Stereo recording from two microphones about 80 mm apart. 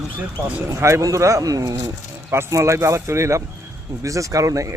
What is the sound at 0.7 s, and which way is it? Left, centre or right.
Speech, right.